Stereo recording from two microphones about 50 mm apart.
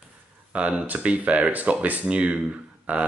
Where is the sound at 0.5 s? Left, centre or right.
Right.